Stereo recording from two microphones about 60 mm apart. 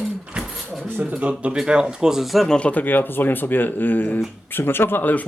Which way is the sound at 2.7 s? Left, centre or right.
Left.